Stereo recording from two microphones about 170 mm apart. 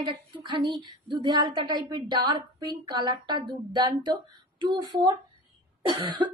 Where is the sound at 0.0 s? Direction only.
25° right (ahead or behind).